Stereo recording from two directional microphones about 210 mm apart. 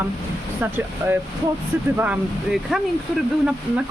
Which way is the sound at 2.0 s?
5° right (ahead or behind).